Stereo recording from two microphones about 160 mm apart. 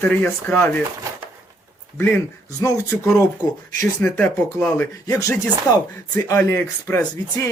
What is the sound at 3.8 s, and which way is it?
Speech, 10° left (ahead or behind).